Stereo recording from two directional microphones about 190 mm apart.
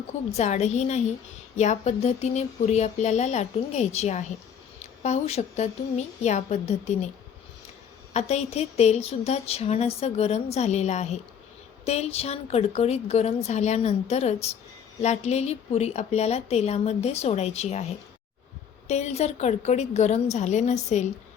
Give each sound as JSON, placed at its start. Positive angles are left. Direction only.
{"t": 0.3, "sound": "a woman's voice", "side_deg": 35}
{"t": 8.1, "sound": "a woman's voice", "side_deg": 35}